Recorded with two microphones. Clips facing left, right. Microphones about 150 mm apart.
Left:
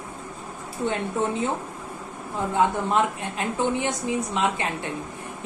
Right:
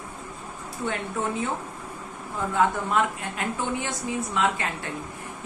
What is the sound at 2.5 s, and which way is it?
A woman's voice, 20° left (ahead or behind).